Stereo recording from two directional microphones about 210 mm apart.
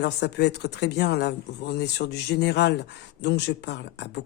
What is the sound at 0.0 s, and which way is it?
Speech, 55° left (ahead or behind).